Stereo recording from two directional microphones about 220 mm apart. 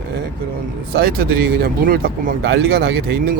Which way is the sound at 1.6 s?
45° right (ahead or behind).